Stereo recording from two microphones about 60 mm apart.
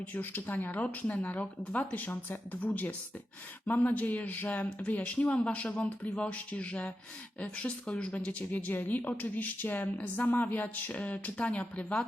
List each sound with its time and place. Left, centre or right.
0.1 s speech: left